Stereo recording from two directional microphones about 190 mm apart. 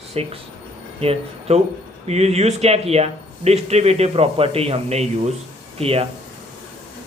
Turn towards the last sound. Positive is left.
turn(degrees=-30)  # may be behind; listen again after turning